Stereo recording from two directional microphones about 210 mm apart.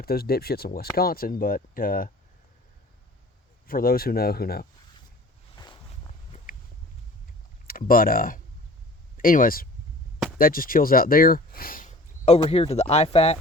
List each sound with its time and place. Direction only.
0.0 s speech: 45° left (ahead or behind)
3.7 s speech: 45° left (ahead or behind)
6.3 s a sound: 40° left (ahead or behind)
7.7 s speech: 45° left (ahead or behind)